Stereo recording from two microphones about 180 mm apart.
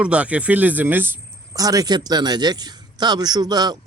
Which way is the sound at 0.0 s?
5° right (ahead or behind).